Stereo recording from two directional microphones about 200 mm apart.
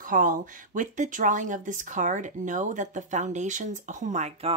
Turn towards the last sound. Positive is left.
turn(degrees=-35)  # may be behind; listen again after turning